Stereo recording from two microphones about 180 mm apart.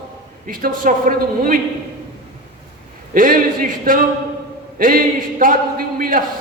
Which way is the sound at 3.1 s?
50° right (ahead or behind).